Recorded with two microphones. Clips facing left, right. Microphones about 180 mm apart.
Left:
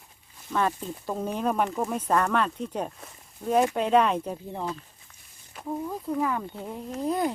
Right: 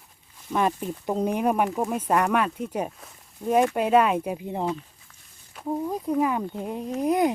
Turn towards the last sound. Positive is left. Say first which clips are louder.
# right 5 dB
turn(degrees=-15)  # may be behind; listen again after turning